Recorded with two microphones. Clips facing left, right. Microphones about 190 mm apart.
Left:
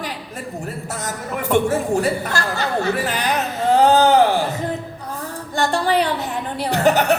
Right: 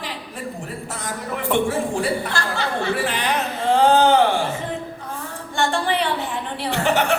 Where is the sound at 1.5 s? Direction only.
40° left (ahead or behind).